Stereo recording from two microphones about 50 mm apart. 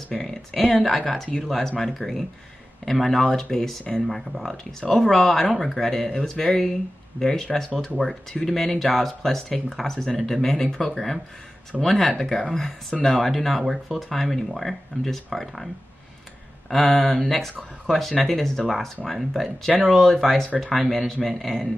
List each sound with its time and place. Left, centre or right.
0.1 s speech: centre
4.1 s speech: centre